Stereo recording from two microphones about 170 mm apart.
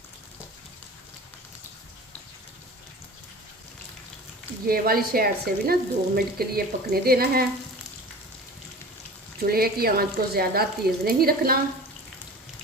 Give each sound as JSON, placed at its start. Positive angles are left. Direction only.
{"t": 4.6, "sound": "speech", "side_deg": -60}
{"t": 9.4, "sound": "speech", "side_deg": -60}